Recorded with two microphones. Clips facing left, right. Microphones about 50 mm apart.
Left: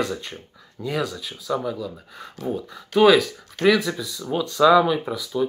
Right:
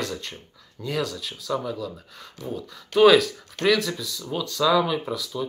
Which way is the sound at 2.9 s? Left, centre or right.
Centre.